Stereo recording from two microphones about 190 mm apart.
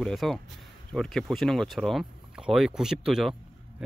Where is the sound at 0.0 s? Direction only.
Centre (ahead or behind).